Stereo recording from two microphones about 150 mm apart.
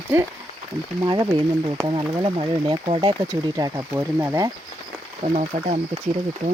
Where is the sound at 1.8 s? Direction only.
25° right (ahead or behind).